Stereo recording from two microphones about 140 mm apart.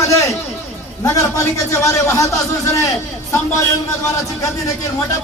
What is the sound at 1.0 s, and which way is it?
A man's voice, 20° left (ahead or behind).